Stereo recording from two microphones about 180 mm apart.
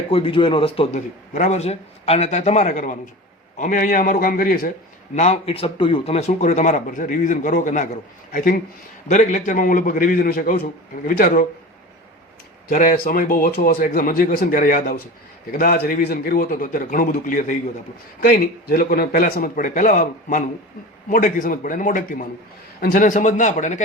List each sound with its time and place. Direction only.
0.1 s a man's voice: 30° left (ahead or behind); by 4.7 s 55° left (ahead or behind)
5.1 s a man's voice: 40° left (ahead or behind)
9.0 s speech: 40° left (ahead or behind)
12.6 s speech: 50° left (ahead or behind)